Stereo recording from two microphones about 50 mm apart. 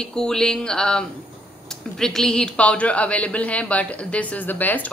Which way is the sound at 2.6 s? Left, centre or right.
Left.